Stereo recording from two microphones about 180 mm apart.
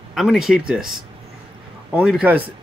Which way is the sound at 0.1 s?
Centre (ahead or behind).